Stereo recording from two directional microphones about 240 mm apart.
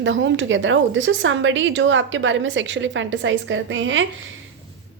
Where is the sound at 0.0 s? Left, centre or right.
Right.